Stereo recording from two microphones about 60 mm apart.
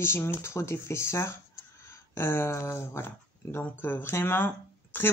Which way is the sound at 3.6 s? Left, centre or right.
Left.